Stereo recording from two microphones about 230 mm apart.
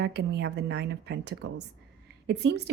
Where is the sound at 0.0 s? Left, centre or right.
Right.